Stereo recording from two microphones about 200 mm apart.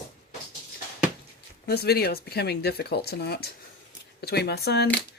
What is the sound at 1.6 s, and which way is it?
Speech, 50° left (ahead or behind).